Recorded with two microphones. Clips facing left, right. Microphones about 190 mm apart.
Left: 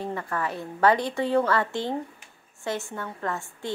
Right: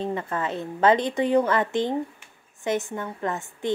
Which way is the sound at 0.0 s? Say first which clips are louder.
Right 2 dB; 20° right (ahead or behind).